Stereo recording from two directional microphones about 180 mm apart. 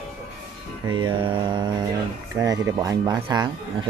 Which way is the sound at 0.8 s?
25° right (ahead or behind).